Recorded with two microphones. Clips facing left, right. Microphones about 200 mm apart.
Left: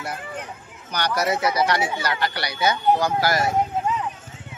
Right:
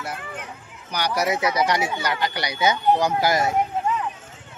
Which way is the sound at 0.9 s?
10° right (ahead or behind).